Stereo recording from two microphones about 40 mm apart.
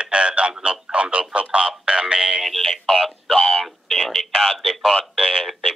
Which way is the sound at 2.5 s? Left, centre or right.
Centre.